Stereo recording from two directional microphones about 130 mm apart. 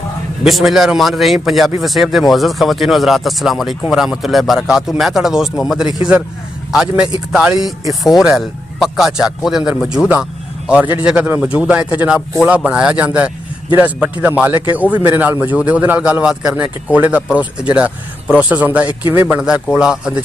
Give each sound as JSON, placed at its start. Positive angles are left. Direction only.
{"t": 0.4, "sound": "a man's voice", "side_deg": 0}